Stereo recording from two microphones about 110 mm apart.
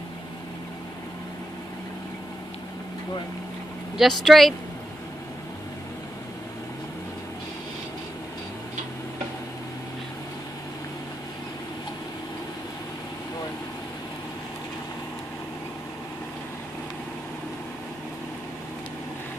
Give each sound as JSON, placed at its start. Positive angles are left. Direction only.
{"t": 3.9, "sound": "speech", "side_deg": 0}